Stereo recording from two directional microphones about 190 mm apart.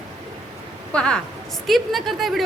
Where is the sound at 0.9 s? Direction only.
5° left (ahead or behind).